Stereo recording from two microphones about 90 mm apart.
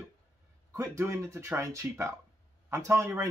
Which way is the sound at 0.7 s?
35° right (ahead or behind).